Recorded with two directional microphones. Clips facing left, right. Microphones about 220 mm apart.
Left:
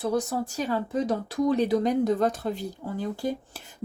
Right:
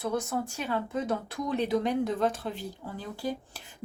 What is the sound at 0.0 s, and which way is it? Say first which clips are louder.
Speech: left 4 dB; 35° left (ahead or behind).